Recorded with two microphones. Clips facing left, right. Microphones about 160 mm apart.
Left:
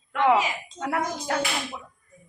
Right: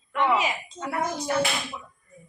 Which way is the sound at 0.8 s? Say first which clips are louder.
Left 3 dB; 75° left (ahead or behind).